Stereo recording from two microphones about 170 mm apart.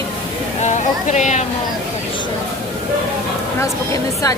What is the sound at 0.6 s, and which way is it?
Speech, 45° left (ahead or behind).